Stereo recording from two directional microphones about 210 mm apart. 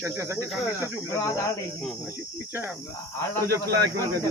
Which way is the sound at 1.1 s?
15° left (ahead or behind).